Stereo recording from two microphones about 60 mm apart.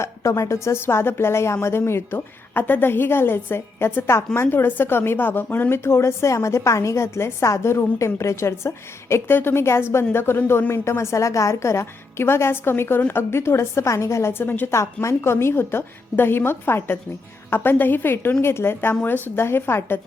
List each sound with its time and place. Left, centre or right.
0.0 s a woman's voice: left
14.7 s a woman's voice: left